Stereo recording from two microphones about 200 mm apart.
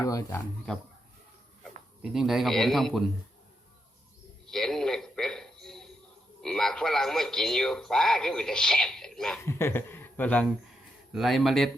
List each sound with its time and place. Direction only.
0.0 s speech: 15° left (ahead or behind)
2.0 s a man's voice: centre (ahead or behind)
4.5 s a sound: centre (ahead or behind)
6.4 s a man's voice: 5° left (ahead or behind)
9.4 s a man's voice: 15° left (ahead or behind)